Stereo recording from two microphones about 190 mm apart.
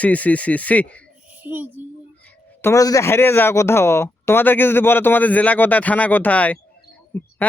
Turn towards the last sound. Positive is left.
turn(degrees=10)  # may be behind; listen again after turning